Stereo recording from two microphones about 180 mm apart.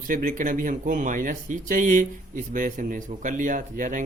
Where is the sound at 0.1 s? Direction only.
45° right (ahead or behind).